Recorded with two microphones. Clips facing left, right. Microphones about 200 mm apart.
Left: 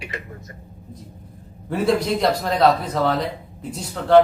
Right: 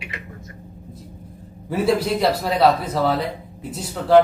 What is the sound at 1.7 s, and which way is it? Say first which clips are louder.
A man's voice: even; 5° right (ahead or behind).